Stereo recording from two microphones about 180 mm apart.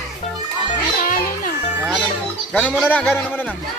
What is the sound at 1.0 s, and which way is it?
Music, 50° left (ahead or behind).